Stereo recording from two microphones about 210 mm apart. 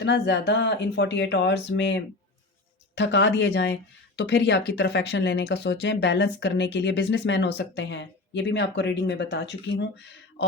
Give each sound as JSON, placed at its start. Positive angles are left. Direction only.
{"t": 0.0, "sound": "speech", "side_deg": 55}